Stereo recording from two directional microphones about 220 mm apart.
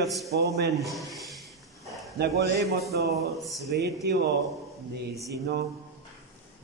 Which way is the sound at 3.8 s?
50° right (ahead or behind).